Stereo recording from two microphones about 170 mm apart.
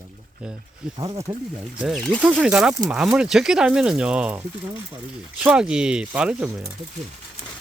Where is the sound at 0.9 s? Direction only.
30° right (ahead or behind).